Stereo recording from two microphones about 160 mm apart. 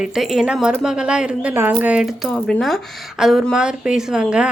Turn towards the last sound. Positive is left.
turn(degrees=-5)  # may be behind; listen again after turning